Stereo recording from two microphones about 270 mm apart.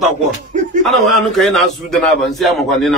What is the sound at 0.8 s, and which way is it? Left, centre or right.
A man's voice, centre.